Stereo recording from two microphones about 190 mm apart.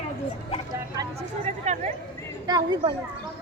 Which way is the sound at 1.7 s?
40° right (ahead or behind).